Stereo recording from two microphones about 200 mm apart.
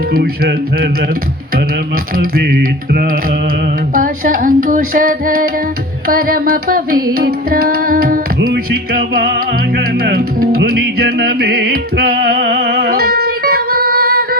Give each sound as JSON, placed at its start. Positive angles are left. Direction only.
{"t": 0.1, "sound": "music", "side_deg": -50}
{"t": 2.1, "sound": "music", "side_deg": -50}